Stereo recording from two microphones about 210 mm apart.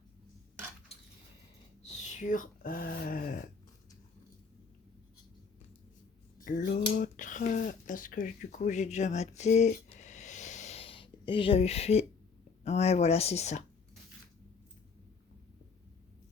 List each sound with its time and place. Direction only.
2.0 s speech: 35° left (ahead or behind)
6.4 s speech: 45° left (ahead or behind)